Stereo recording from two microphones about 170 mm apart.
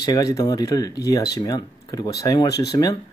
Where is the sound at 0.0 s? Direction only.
20° left (ahead or behind).